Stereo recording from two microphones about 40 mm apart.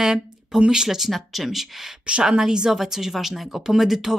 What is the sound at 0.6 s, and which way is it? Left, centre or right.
Speech, centre.